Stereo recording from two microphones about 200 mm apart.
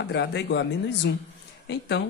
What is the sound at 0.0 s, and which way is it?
Speech, 60° left (ahead or behind).